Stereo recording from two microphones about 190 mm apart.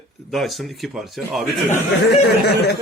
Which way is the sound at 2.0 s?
60° left (ahead or behind).